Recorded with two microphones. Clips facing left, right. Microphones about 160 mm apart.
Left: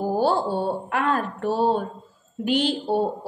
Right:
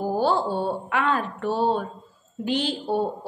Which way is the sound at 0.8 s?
45° left (ahead or behind).